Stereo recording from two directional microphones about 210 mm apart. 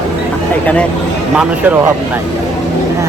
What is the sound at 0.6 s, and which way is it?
Speech, 5° left (ahead or behind).